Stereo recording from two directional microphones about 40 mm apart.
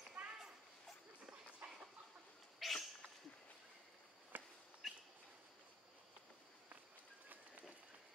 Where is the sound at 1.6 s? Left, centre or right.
Right.